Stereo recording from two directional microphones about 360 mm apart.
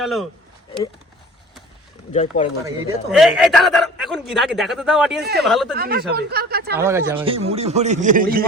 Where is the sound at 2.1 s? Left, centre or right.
Centre.